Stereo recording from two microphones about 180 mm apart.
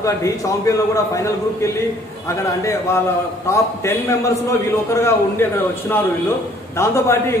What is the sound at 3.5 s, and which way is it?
A man's voice, 15° left (ahead or behind).